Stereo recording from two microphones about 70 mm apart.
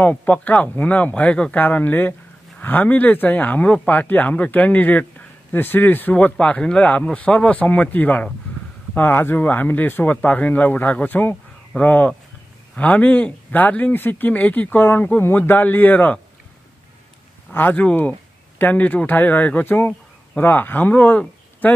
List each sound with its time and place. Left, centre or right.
0.0 s speech: left
17.5 s speech: left